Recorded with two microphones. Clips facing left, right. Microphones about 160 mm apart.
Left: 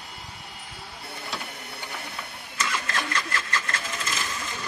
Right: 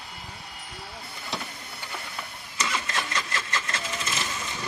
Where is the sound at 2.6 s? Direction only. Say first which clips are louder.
Left 1 dB; 20° right (ahead or behind).